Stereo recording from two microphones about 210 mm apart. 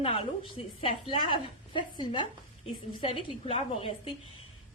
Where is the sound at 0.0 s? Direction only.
30° left (ahead or behind).